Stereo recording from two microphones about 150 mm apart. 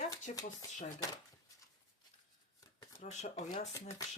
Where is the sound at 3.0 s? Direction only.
50° left (ahead or behind).